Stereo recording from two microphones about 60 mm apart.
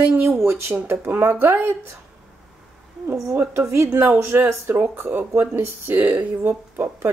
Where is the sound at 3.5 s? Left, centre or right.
Right.